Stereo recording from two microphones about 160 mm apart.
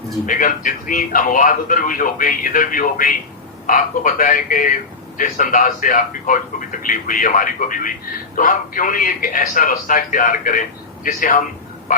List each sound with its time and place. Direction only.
0.3 s a man's voice: 60° left (ahead or behind)